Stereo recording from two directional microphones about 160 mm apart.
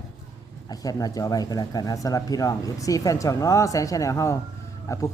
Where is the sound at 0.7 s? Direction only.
20° left (ahead or behind).